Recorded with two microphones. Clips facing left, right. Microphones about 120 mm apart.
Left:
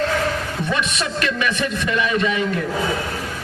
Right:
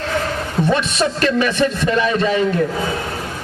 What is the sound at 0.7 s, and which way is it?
A man's voice, 35° right (ahead or behind).